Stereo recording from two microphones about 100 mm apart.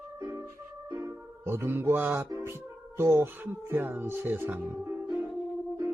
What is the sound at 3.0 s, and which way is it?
Speech, 25° right (ahead or behind).